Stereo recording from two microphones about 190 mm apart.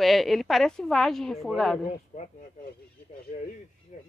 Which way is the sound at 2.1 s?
35° left (ahead or behind).